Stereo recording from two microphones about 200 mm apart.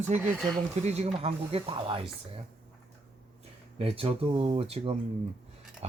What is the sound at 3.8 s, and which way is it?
Speech, 30° right (ahead or behind).